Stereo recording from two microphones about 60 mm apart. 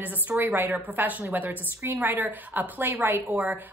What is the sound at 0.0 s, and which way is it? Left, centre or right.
A woman's voice, right.